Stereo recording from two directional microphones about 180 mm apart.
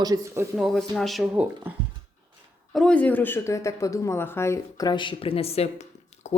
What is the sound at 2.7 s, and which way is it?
Speech, 5° left (ahead or behind).